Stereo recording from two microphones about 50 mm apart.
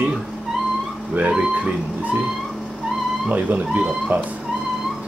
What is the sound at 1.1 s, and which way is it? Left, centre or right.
Speech, right.